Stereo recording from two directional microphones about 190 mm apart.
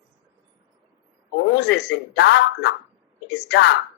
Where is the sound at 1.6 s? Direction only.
65° left (ahead or behind).